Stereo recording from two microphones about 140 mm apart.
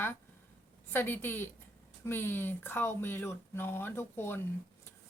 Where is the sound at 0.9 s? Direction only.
15° left (ahead or behind).